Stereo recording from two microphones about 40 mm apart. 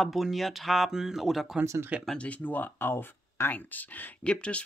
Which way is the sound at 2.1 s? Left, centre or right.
Left.